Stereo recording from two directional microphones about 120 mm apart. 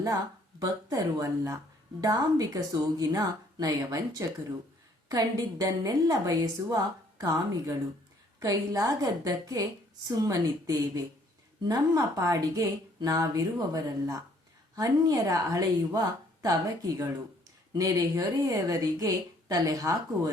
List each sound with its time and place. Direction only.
0.6 s a woman's voice: 30° right (ahead or behind)
17.7 s a woman's voice: 30° right (ahead or behind)